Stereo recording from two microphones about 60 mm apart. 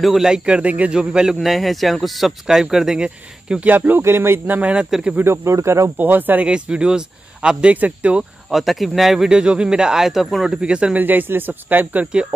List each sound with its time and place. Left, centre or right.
0.0 s speech: centre
0.5 s speech: right
3.6 s speech: right
4.0 s speech: right
4.6 s speech: right
5.2 s speech: right
5.9 s speech: right
6.4 s speech: centre
7.7 s speech: right
8.5 s speech: centre
9.3 s speech: centre
10.6 s speech: centre
11.0 s speech: right